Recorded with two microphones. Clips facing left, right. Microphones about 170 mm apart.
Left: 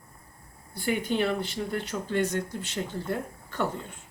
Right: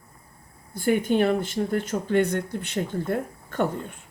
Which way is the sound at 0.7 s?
50° right (ahead or behind).